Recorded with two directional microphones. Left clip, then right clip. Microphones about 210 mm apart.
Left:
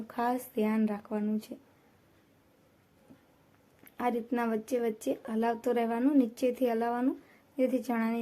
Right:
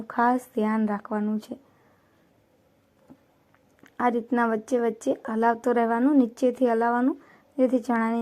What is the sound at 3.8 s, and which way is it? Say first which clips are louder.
Speech: right 7 dB; 15° right (ahead or behind).